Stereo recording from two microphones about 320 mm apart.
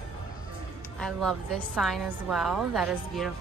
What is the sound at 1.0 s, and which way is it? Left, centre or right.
A woman's voice, centre.